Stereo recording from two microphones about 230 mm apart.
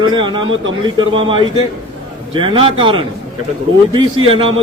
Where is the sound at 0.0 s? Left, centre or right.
Centre.